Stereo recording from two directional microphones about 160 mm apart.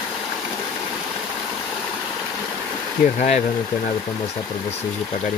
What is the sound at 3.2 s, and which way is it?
Speech, 50° left (ahead or behind).